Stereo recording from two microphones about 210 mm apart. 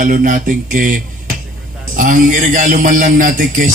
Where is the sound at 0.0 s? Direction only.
40° right (ahead or behind).